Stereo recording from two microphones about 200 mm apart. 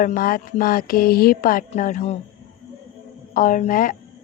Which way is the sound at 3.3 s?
45° left (ahead or behind).